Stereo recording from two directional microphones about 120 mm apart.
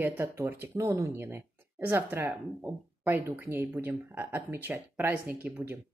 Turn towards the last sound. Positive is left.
turn(degrees=-15)  # may be behind; listen again after turning